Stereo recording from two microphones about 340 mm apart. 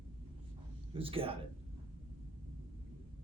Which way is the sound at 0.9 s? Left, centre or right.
Centre.